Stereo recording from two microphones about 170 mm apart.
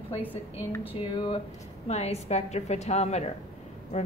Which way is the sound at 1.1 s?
30° left (ahead or behind).